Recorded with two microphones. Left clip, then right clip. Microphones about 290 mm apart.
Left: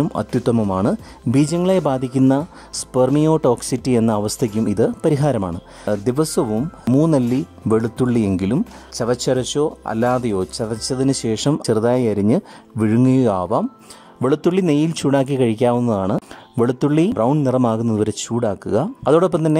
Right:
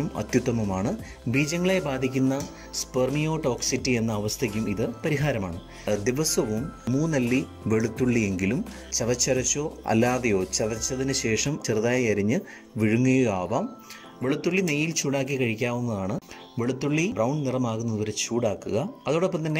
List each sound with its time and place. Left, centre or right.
0.1 s a man's voice: centre